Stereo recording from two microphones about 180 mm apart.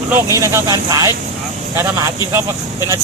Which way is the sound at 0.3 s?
15° right (ahead or behind).